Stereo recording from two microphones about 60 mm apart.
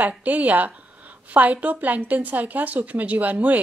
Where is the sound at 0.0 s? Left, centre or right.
Right.